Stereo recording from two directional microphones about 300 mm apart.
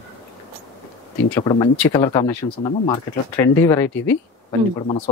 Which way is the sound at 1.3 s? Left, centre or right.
Centre.